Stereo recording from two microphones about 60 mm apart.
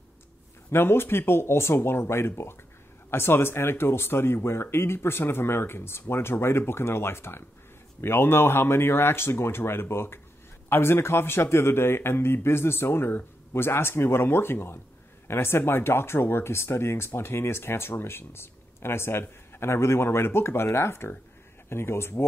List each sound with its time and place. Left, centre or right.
0.7 s speech: left